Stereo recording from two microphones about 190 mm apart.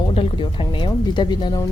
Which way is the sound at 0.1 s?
30° left (ahead or behind).